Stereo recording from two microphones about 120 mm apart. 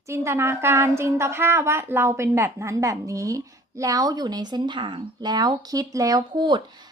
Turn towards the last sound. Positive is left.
turn(degrees=-40)  # may be behind; listen again after turning